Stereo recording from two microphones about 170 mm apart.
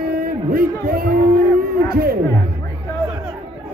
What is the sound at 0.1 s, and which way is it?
A man's voice, 55° right (ahead or behind).